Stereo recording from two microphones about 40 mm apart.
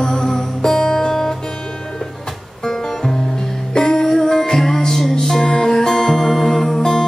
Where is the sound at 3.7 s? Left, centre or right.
Centre.